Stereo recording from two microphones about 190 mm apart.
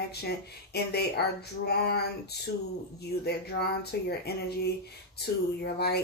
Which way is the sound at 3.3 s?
55° left (ahead or behind).